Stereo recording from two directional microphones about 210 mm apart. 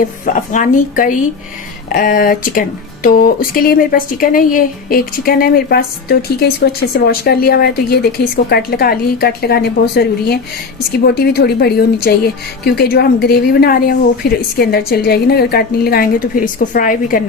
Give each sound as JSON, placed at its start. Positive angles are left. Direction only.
{"t": 0.0, "sound": "speech", "side_deg": 40}